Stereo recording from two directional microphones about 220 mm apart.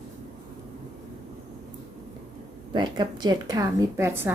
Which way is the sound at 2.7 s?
20° right (ahead or behind).